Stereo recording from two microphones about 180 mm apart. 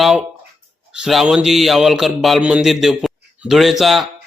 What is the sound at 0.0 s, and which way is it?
A man's voice, centre (ahead or behind).